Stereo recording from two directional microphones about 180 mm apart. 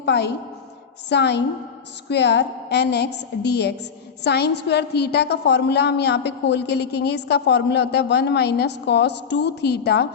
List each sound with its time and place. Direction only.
0.0 s a woman's voice: 70° left (ahead or behind)